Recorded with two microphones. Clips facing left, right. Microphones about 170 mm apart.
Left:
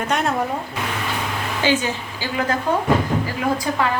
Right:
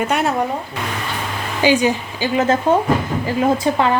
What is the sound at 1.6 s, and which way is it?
A woman's voice, 15° right (ahead or behind).